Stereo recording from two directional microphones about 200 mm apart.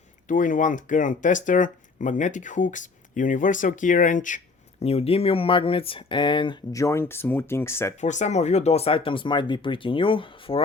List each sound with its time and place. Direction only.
0.3 s speech: 40° left (ahead or behind); by 7.9 s 15° left (ahead or behind)
8.0 s speech: 35° left (ahead or behind)